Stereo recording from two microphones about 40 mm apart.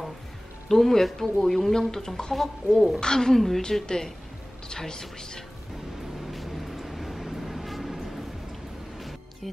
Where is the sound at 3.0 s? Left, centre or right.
Centre.